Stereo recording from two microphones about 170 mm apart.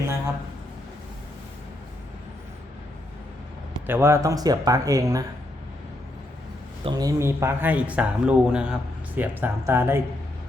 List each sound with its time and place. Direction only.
3.8 s speech: 15° right (ahead or behind)
6.8 s speech: 20° right (ahead or behind)